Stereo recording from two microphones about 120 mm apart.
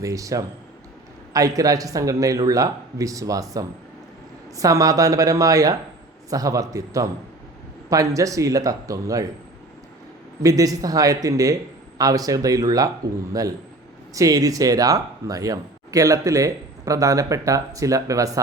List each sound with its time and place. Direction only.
0.0 s speech: 25° right (ahead or behind)
10.4 s speech: 30° right (ahead or behind)
14.1 s speech: 30° right (ahead or behind)